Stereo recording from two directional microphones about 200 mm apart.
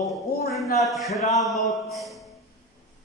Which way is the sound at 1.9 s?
Centre (ahead or behind).